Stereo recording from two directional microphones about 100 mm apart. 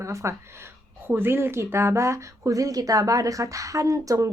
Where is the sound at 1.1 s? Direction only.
25° right (ahead or behind).